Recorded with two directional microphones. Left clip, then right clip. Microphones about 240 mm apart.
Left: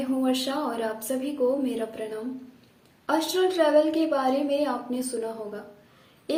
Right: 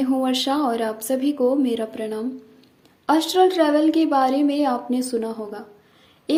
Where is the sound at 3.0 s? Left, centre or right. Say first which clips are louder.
Right 7 dB; right.